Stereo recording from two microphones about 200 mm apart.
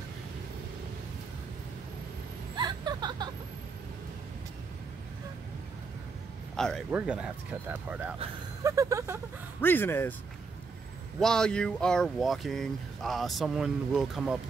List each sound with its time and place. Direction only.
2.5 s vehicle: 20° right (ahead or behind)
6.5 s speech: 5° left (ahead or behind); by 9.2 s 15° right (ahead or behind)
9.6 s speech: 10° left (ahead or behind)
11.1 s speech: 5° left (ahead or behind)